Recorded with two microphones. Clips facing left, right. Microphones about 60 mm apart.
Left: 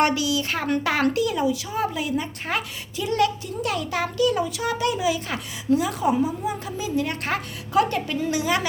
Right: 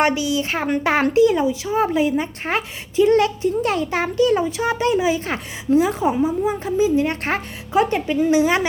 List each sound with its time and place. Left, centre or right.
0.0 s a woman's voice: right